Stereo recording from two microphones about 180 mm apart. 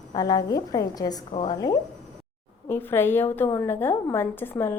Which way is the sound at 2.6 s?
10° left (ahead or behind).